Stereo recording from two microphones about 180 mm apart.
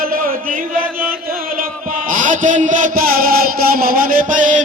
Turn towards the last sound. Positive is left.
turn(degrees=-45)  # may be behind; listen again after turning